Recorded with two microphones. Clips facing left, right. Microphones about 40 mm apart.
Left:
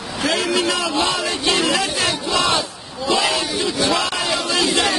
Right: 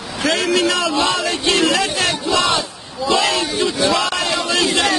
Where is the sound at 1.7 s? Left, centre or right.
Centre.